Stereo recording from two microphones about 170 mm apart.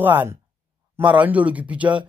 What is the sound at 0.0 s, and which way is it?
A man's voice, 10° right (ahead or behind).